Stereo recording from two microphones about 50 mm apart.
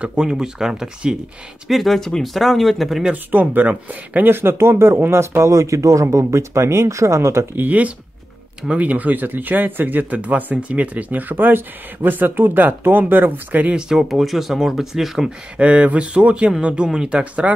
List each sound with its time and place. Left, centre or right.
0.0 s speech: centre
1.7 s speech: centre
3.3 s speech: right
4.3 s speech: right
7.5 s speech: right
13.7 s speech: centre
15.2 s speech: right